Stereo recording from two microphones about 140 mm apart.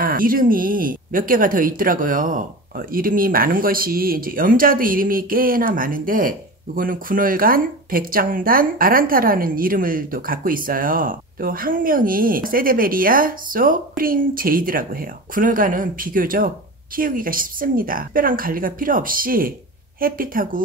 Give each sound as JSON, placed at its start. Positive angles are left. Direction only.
{"t": 0.0, "sound": "speech", "side_deg": -90}